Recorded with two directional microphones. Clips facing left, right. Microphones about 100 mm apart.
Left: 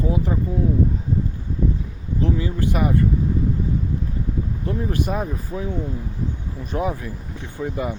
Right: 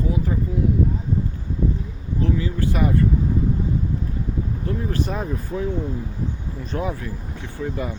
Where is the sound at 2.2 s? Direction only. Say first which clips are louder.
Left 1 dB; 20° left (ahead or behind).